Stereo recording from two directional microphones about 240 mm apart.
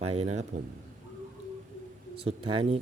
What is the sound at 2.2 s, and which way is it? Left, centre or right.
Speech, right.